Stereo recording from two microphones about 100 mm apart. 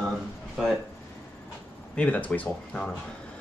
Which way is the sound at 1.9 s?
15° left (ahead or behind).